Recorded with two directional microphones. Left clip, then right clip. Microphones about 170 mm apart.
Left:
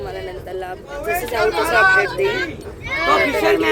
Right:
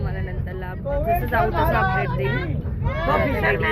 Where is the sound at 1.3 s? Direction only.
15° left (ahead or behind).